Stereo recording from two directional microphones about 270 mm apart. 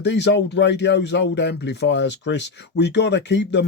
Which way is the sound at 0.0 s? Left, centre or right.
Left.